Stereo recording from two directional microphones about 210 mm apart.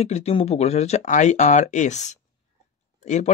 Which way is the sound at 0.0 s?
30° left (ahead or behind).